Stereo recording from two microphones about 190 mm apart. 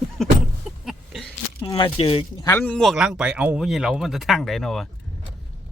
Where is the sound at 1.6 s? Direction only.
25° left (ahead or behind).